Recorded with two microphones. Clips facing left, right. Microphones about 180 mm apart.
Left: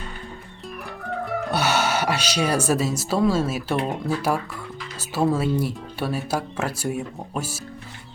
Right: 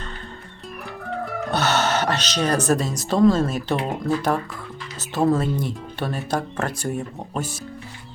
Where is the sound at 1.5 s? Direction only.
10° left (ahead or behind).